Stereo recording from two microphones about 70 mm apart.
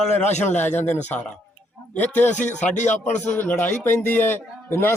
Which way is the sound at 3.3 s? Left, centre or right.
Left.